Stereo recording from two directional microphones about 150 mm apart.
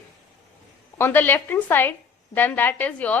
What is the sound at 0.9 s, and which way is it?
A woman's voice, 15° left (ahead or behind).